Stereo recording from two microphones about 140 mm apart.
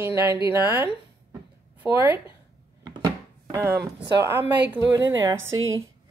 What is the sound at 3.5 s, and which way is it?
A woman's voice, 20° right (ahead or behind).